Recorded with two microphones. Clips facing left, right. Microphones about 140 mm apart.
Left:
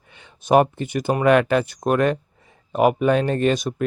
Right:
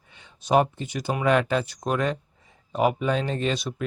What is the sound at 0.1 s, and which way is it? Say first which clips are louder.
Speech: left 5 dB; 65° left (ahead or behind).